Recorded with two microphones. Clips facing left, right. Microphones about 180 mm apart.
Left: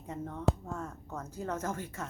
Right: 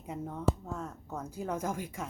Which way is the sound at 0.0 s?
5° right (ahead or behind).